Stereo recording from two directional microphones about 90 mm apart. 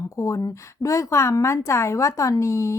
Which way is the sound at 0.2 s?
35° left (ahead or behind).